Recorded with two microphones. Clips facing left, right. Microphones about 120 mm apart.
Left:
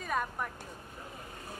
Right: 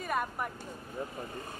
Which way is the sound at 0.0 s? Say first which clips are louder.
Right 1 dB; 5° right (ahead or behind).